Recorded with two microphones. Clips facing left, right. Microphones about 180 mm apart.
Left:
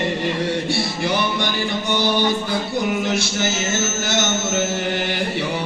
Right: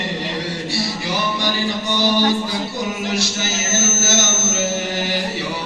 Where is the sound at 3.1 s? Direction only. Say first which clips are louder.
Left 2 dB; 55° left (ahead or behind).